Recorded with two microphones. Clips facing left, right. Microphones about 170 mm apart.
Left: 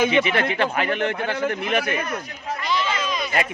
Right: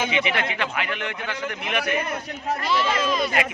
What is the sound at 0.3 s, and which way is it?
A man's voice, 40° left (ahead or behind).